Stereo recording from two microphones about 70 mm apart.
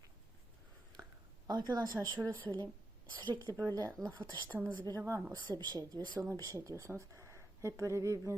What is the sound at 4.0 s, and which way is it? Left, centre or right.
Speech, right.